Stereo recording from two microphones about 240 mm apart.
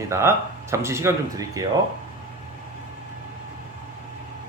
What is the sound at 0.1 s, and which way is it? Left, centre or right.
Speech, centre.